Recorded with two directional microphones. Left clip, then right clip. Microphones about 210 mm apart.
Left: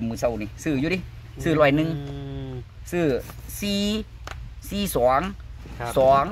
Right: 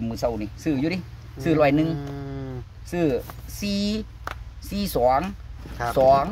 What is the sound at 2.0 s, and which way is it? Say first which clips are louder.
Insect: right 2 dB; 10° right (ahead or behind).